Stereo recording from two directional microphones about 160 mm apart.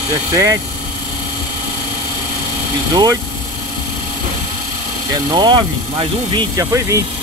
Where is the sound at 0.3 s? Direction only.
20° right (ahead or behind).